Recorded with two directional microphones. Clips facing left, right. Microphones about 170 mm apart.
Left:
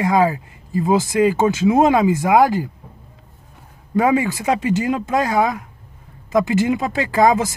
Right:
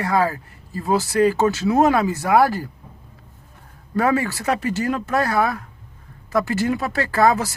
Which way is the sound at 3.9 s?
15° left (ahead or behind).